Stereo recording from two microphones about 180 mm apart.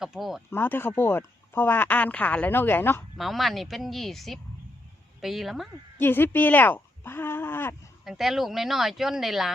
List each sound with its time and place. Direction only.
0.0 s speech: centre (ahead or behind)
0.5 s speech: 10° left (ahead or behind)
3.2 s speech: centre (ahead or behind)
6.0 s speech: 10° left (ahead or behind)
8.0 s speech: centre (ahead or behind)